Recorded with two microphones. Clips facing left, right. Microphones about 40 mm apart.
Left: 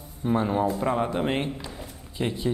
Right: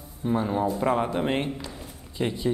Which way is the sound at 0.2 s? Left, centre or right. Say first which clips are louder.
Left 1 dB; centre.